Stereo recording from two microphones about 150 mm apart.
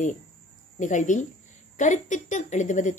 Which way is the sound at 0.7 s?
55° left (ahead or behind).